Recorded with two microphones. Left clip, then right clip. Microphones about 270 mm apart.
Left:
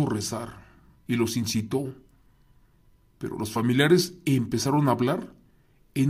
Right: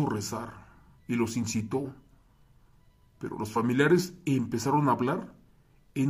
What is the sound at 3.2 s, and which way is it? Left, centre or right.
Speech, left.